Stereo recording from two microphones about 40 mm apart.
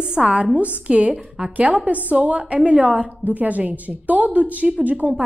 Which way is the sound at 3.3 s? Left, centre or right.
Right.